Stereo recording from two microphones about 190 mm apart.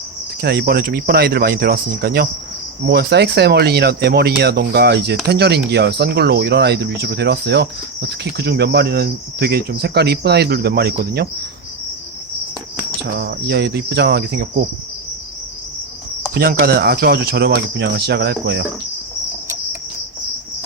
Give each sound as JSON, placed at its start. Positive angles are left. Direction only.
{"t": 0.4, "sound": "speech", "side_deg": -55}
{"t": 2.8, "sound": "cricket", "side_deg": -60}
{"t": 13.1, "sound": "cricket", "side_deg": -60}
{"t": 16.3, "sound": "cricket", "side_deg": -55}